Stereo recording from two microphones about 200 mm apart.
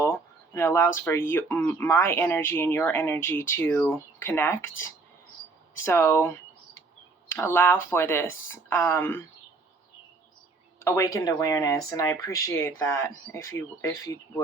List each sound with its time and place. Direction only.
0.0 s speech: 15° left (ahead or behind)
10.8 s speech: 15° left (ahead or behind)